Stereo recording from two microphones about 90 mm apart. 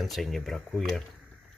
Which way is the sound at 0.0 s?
Centre (ahead or behind).